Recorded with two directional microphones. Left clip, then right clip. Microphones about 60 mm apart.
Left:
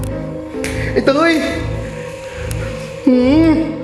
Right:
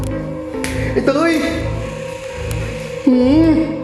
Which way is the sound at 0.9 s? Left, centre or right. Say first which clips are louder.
Left 2 dB; left.